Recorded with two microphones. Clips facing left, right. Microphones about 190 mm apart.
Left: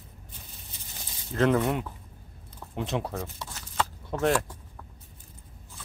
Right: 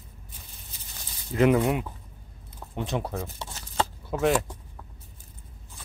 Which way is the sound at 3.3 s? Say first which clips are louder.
Right 2 dB; 25° right (ahead or behind).